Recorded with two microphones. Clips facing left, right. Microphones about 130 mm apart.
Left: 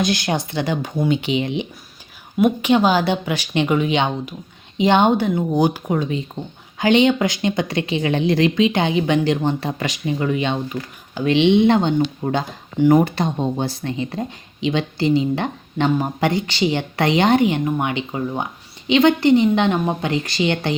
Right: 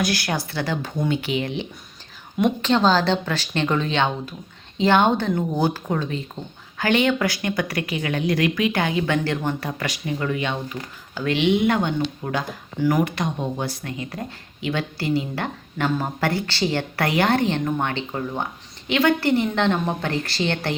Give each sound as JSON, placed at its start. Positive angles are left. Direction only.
{"t": 0.0, "sound": "speech", "side_deg": 20}